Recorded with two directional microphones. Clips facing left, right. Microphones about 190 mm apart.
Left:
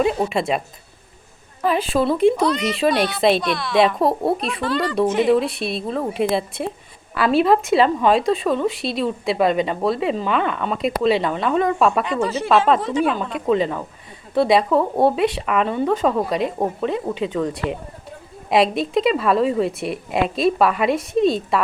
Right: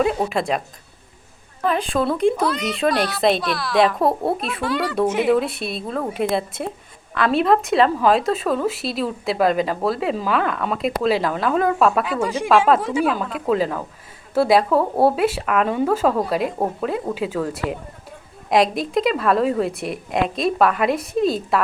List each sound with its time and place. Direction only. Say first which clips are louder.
0.0 s speech: left 1 dB; centre (ahead or behind)
1.6 s speech: left 2 dB; 5° left (ahead or behind)